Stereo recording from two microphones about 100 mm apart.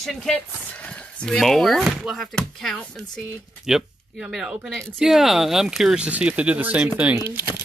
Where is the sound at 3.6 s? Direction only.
5° right (ahead or behind); by 7.6 s 20° right (ahead or behind).